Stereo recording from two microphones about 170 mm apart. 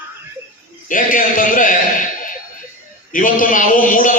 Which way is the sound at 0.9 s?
50° left (ahead or behind).